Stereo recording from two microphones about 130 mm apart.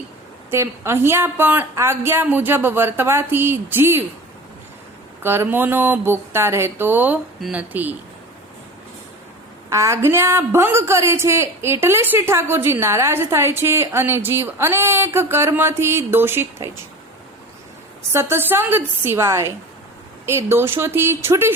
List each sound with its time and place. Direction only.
0.5 s a woman's voice: 20° right (ahead or behind)
5.2 s a woman's voice: 20° right (ahead or behind)
9.6 s a woman's voice: 20° right (ahead or behind)
18.1 s a woman's voice: 20° right (ahead or behind)